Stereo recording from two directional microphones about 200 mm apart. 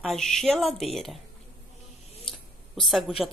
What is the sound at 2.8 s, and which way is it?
Speech, centre (ahead or behind).